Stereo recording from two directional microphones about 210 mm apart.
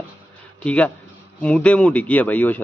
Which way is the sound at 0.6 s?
5° left (ahead or behind).